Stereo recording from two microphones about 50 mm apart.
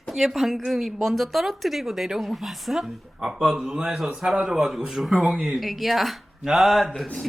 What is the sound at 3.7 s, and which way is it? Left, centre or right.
A man's voice, centre.